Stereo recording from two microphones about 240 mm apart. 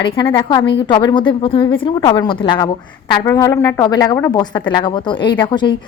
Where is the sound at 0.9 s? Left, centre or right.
Centre.